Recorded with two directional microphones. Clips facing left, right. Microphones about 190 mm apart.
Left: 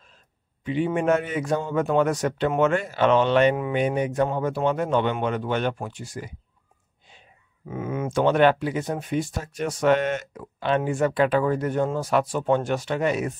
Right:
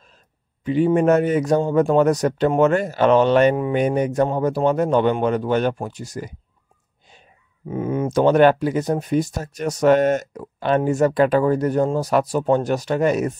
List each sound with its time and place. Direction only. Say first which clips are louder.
0.7 s speech: right 6 dB; 40° right (ahead or behind)
7.6 s speech: right 6 dB; 30° right (ahead or behind)